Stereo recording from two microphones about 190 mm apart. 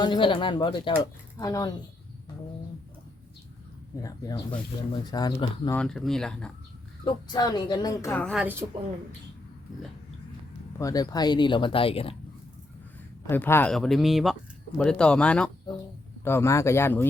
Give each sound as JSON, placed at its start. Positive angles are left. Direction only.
{"t": 0.0, "sound": "speech", "side_deg": 25}
{"t": 4.0, "sound": "speech", "side_deg": 20}
{"t": 5.7, "sound": "speech", "side_deg": 5}
{"t": 7.0, "sound": "speech", "side_deg": 20}
{"t": 8.1, "sound": "speech", "side_deg": 5}
{"t": 10.8, "sound": "speech", "side_deg": 20}
{"t": 13.2, "sound": "speech", "side_deg": 10}